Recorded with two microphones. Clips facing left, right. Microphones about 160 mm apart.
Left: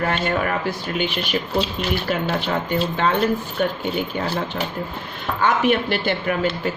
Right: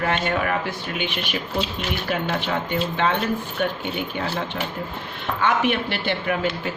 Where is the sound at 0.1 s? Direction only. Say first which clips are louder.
Left 1 dB; 40° left (ahead or behind).